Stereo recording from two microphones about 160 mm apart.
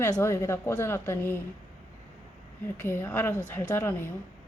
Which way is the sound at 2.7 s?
15° left (ahead or behind).